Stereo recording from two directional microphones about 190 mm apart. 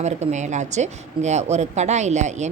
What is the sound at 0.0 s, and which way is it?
Speech, 35° right (ahead or behind).